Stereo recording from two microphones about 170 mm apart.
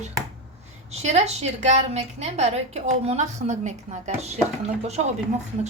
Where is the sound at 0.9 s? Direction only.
40° right (ahead or behind).